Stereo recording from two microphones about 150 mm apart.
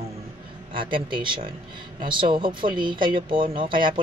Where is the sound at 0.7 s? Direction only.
35° right (ahead or behind).